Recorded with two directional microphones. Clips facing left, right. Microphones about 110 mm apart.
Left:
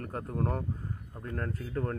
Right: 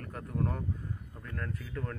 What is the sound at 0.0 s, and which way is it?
Speech, 40° left (ahead or behind).